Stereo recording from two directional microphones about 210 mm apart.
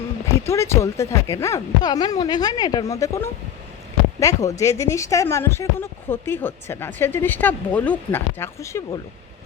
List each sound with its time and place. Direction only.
0.4 s a woman's voice: 15° left (ahead or behind)